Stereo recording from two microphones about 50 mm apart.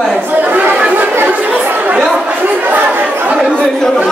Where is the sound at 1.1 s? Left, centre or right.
Right.